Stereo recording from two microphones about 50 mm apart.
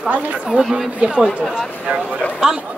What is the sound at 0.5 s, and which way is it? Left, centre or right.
Speech, centre.